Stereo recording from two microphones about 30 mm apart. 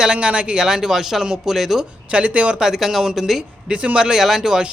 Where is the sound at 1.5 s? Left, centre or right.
Centre.